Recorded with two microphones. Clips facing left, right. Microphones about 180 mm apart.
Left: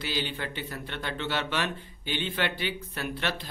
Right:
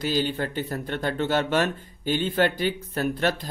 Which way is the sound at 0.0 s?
45° right (ahead or behind).